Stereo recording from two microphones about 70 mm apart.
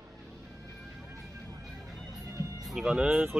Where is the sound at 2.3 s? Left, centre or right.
Right.